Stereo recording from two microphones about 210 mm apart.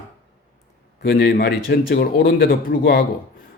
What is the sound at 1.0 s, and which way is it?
Speech, 45° left (ahead or behind).